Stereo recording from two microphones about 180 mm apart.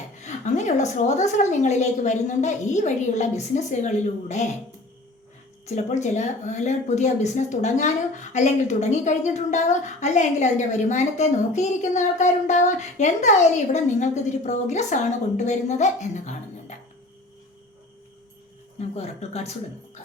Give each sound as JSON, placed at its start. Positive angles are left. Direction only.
{"t": 0.2, "sound": "speech", "side_deg": 40}
{"t": 5.6, "sound": "speech", "side_deg": 40}
{"t": 18.8, "sound": "speech", "side_deg": 35}